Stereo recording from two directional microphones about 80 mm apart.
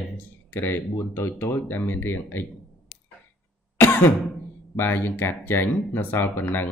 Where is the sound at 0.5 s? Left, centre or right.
Left.